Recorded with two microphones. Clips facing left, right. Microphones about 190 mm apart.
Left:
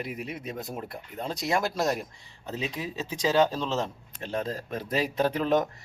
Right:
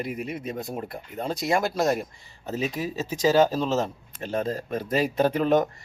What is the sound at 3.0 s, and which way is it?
Speech, 45° right (ahead or behind).